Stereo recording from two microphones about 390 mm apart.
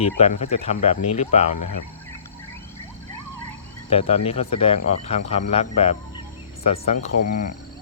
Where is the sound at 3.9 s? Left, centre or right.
Centre.